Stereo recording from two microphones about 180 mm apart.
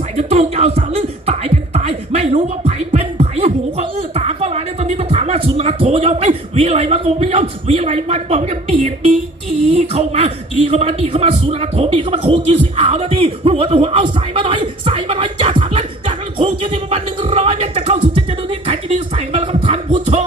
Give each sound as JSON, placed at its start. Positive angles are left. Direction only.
{"t": 0.2, "sound": "a man's voice", "side_deg": -35}
{"t": 0.8, "sound": "beatboxing", "side_deg": -35}
{"t": 9.6, "sound": "a man's voice", "side_deg": -35}
{"t": 14.8, "sound": "music", "side_deg": -30}